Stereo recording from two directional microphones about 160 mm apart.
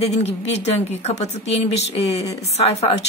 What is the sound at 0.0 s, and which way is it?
Speech, 40° left (ahead or behind).